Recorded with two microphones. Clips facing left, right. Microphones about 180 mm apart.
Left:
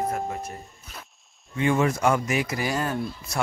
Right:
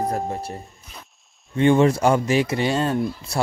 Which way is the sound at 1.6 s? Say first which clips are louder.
Right 6 dB; 30° right (ahead or behind).